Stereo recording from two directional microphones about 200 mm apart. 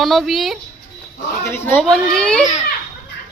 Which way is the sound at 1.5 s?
10° left (ahead or behind).